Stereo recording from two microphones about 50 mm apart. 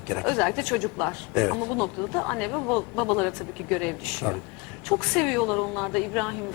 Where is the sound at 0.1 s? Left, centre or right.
Centre.